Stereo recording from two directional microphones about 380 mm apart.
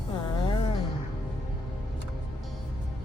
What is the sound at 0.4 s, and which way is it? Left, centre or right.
Music, centre.